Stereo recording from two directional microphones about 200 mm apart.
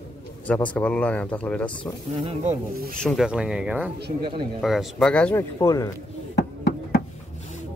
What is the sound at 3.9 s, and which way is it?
Speech, 55° right (ahead or behind).